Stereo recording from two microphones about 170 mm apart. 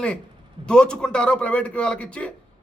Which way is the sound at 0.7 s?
5° left (ahead or behind).